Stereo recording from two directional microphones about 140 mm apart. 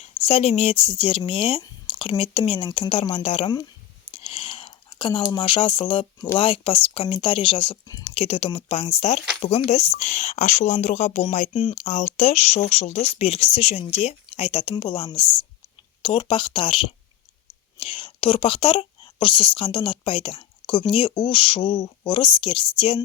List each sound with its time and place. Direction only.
0.0 s a woman's voice: 45° left (ahead or behind)
4.1 s a sound: 40° left (ahead or behind)
6.1 s speech: 20° left (ahead or behind)
6.4 s a woman's voice: 40° left (ahead or behind)
11.5 s a woman's voice: 40° left (ahead or behind)
11.9 s a woman's voice: 55° left (ahead or behind); by 23.0 s 40° left (ahead or behind)